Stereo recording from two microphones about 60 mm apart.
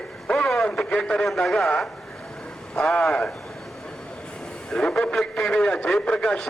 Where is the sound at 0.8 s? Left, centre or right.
Centre.